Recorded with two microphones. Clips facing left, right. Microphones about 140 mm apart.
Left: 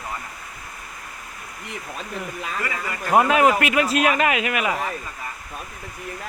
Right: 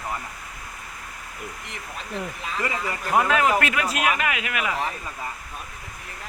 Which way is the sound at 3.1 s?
20° left (ahead or behind).